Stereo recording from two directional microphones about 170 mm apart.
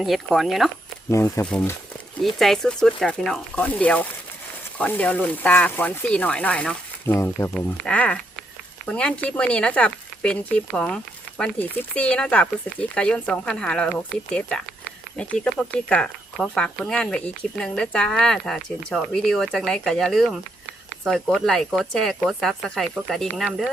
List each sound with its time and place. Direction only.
0.0 s speech: centre (ahead or behind)
1.1 s speech: 15° left (ahead or behind)
1.5 s speech: 5° left (ahead or behind)